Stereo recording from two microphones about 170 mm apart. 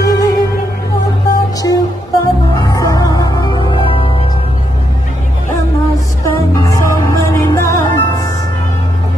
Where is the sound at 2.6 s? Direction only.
20° left (ahead or behind).